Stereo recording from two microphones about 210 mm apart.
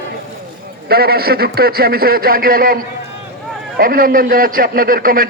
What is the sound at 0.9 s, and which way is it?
A man's voice, 45° right (ahead or behind).